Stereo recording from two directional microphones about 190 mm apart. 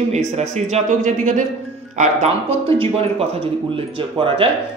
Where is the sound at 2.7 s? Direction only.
30° right (ahead or behind).